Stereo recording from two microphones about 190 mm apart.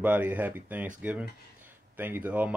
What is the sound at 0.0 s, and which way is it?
Speech, 10° right (ahead or behind).